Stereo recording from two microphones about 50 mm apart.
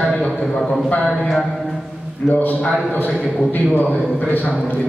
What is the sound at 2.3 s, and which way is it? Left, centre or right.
A man's voice, left.